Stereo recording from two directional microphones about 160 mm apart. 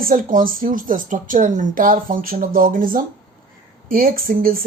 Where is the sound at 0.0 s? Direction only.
60° right (ahead or behind).